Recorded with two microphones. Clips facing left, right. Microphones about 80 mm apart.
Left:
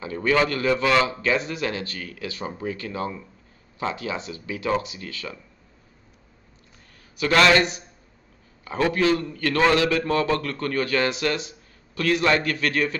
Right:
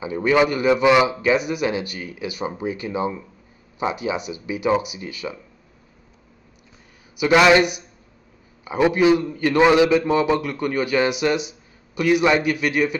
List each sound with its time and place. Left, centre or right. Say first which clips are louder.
0.0 s a man's voice: right 4 dB; centre
7.2 s a man's voice: right 4 dB; centre